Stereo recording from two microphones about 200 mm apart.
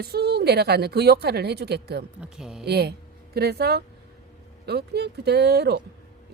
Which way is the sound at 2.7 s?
55° right (ahead or behind).